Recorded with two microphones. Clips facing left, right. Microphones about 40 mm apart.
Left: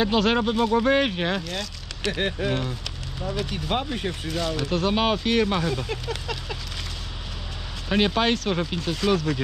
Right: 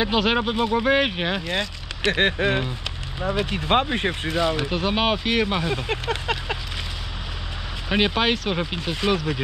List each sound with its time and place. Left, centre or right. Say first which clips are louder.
0.0 s speech: even; centre
2.1 s speech: right 5 dB; right
4.3 s speech: right 2 dB; right
5.7 s speech: right 3 dB; right
7.9 s speech: right 1 dB; centre